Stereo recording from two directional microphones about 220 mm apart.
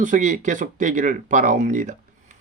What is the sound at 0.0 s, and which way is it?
Speech, 35° right (ahead or behind).